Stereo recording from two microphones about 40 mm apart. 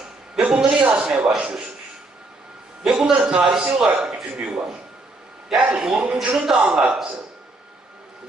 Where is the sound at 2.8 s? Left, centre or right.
Centre.